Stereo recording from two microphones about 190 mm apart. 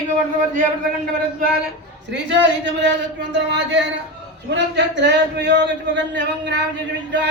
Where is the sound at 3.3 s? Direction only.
65° right (ahead or behind).